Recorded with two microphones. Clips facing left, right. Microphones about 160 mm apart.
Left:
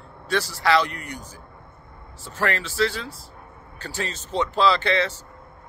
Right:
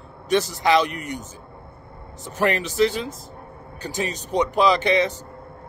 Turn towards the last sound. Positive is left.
turn(degrees=-15)  # may be behind; listen again after turning